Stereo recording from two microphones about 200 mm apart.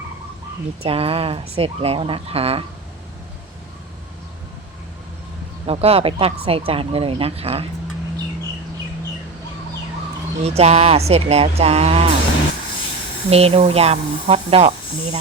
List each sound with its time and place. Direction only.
0.9 s speech: 30° right (ahead or behind)
5.6 s speech: 30° right (ahead or behind)
10.4 s speech: 30° right (ahead or behind)
13.3 s speech: 30° right (ahead or behind)